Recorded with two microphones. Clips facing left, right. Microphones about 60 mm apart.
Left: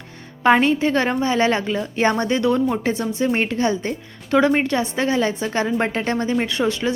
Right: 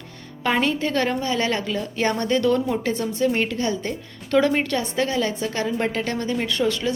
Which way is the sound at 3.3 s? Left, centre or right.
Left.